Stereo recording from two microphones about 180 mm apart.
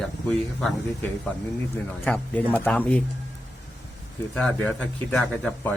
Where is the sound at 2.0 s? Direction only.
10° left (ahead or behind).